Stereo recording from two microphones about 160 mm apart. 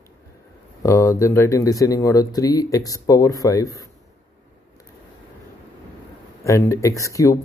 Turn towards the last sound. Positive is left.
turn(degrees=20)  # may be behind; listen again after turning